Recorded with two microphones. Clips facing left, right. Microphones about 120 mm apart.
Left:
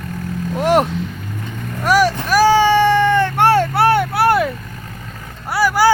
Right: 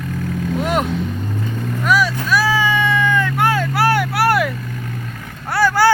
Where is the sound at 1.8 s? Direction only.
40° left (ahead or behind).